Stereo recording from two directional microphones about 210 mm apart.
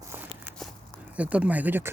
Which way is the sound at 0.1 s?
10° right (ahead or behind).